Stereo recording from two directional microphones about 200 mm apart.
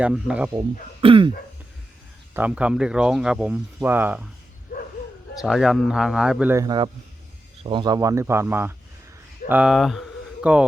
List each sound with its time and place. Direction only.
0.0 s speech: 5° right (ahead or behind)
1.0 s throat clearing: 25° right (ahead or behind)
2.3 s speech: 5° right (ahead or behind)
5.4 s speech: centre (ahead or behind)